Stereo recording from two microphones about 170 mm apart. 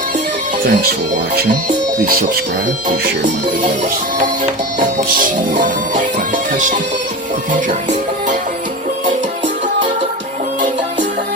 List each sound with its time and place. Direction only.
0.6 s speech: 60° right (ahead or behind)
2.0 s speech: 60° right (ahead or behind)
5.2 s music: 50° right (ahead or behind)